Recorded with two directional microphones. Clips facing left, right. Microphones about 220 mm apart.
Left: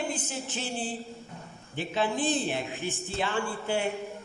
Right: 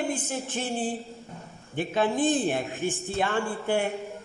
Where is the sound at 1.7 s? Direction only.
50° right (ahead or behind).